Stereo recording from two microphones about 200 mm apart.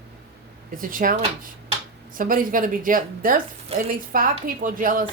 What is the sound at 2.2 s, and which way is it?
A woman's voice, 45° right (ahead or behind).